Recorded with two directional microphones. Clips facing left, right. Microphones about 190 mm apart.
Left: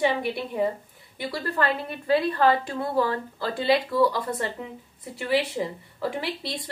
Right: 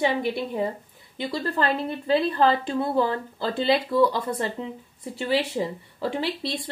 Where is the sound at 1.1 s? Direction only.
20° right (ahead or behind).